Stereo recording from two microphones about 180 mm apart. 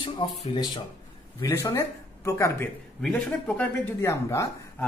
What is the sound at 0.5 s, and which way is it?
Speech, 20° left (ahead or behind).